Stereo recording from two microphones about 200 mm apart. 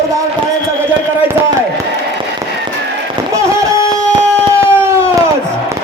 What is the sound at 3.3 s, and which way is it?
Music, 15° right (ahead or behind).